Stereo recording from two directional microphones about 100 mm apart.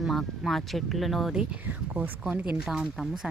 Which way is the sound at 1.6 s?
15° right (ahead or behind).